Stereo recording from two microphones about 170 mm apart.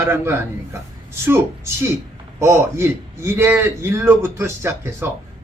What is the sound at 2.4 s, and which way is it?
Speech, 15° right (ahead or behind).